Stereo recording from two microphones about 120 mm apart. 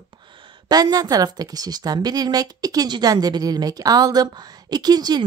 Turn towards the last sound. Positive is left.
turn(degrees=-35)  # may be behind; listen again after turning